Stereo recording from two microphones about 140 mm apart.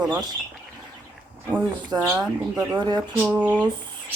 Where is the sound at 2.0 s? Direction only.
25° right (ahead or behind).